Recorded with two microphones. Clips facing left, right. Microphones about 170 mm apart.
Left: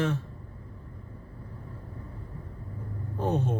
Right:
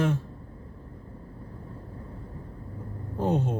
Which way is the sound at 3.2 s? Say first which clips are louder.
Right 2 dB; 15° right (ahead or behind).